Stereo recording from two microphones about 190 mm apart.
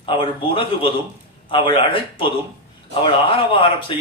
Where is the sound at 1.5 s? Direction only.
25° left (ahead or behind).